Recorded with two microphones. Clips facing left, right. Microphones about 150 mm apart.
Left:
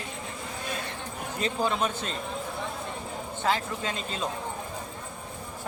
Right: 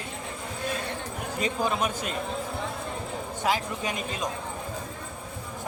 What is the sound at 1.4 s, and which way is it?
Speech, 10° right (ahead or behind).